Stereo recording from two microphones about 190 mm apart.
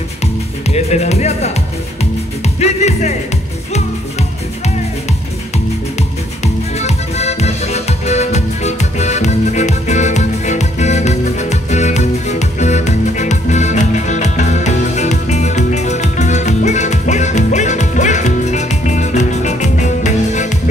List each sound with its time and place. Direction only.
0.7 s music: 35° left (ahead or behind)
2.6 s music: 35° left (ahead or behind)
6.4 s music: 35° left (ahead or behind)